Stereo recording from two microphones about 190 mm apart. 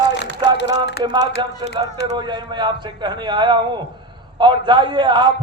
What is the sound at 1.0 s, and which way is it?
A man's voice, 25° right (ahead or behind).